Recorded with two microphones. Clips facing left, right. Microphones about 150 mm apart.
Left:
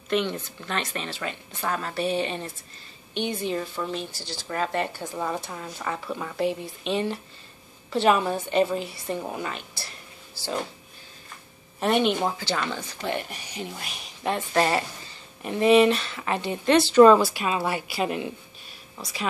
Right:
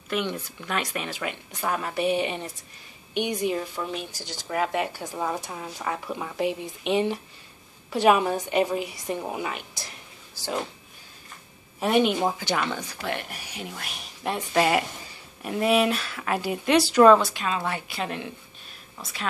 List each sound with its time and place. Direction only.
0.1 s speech: 10° right (ahead or behind)
11.8 s speech: 5° right (ahead or behind)
13.0 s a woman's voice: 5° right (ahead or behind)